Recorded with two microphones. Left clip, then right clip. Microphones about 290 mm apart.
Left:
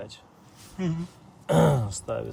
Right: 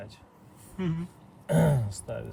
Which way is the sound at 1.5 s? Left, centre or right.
Left.